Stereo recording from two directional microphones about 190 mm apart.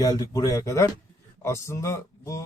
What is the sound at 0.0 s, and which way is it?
Speech, 20° left (ahead or behind).